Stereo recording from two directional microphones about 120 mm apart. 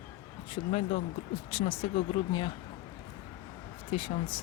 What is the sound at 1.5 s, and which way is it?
Speech, 50° left (ahead or behind).